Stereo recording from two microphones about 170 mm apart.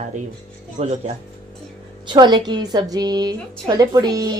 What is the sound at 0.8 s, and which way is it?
Speech, 40° right (ahead or behind).